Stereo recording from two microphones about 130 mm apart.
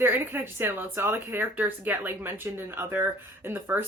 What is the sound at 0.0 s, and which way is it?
Speech, 15° right (ahead or behind).